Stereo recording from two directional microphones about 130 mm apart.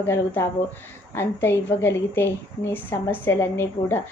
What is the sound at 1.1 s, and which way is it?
A woman's voice, 15° left (ahead or behind).